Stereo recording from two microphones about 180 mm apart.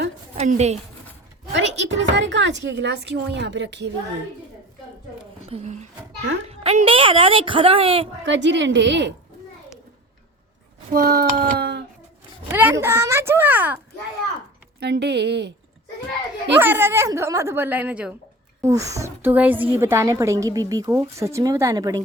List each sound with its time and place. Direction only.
0.3 s a woman's voice: 40° right (ahead or behind)
1.5 s a woman's voice: 85° right
5.5 s a woman's voice: 40° right (ahead or behind)
8.2 s a woman's voice: 90° right
10.9 s speech: 60° right (ahead or behind)
12.5 s a woman's voice: 10° right (ahead or behind)
14.8 s a woman's voice: 70° right (ahead or behind)
16.6 s a woman's voice: 10° right (ahead or behind)